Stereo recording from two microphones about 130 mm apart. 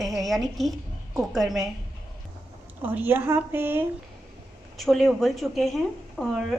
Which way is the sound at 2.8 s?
15° right (ahead or behind).